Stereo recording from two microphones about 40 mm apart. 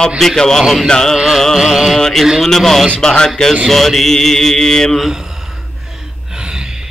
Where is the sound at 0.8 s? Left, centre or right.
Centre.